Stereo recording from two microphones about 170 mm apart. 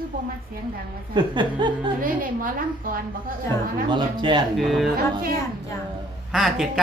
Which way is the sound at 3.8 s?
25° right (ahead or behind).